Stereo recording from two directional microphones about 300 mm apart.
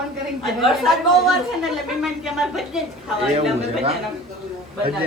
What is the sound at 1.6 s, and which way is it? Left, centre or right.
A woman's voice, centre.